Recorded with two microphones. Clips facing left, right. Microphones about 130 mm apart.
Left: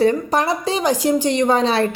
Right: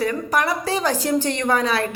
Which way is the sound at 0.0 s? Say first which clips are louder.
Left 5 dB; 20° left (ahead or behind).